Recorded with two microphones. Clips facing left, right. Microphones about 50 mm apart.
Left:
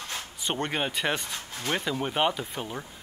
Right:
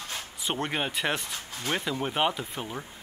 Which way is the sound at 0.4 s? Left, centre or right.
Centre.